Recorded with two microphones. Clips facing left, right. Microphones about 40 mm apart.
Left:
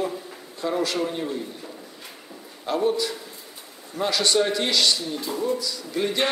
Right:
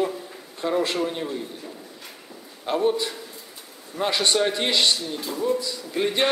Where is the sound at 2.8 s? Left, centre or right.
Right.